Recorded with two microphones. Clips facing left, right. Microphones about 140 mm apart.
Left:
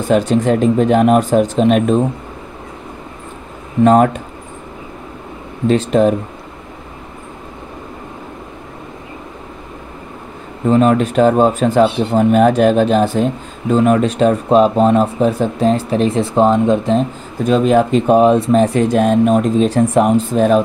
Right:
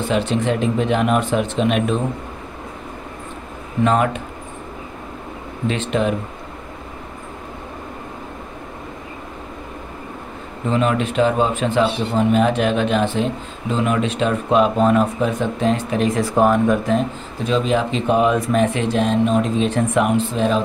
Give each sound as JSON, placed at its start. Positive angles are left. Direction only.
{"t": 0.0, "sound": "speech", "side_deg": 40}
{"t": 3.8, "sound": "speech", "side_deg": 40}
{"t": 5.7, "sound": "speech", "side_deg": 40}
{"t": 10.7, "sound": "speech", "side_deg": 40}
{"t": 17.5, "sound": "speech", "side_deg": 50}